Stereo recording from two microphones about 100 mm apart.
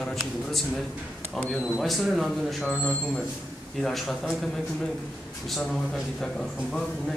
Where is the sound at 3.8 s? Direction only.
Centre (ahead or behind).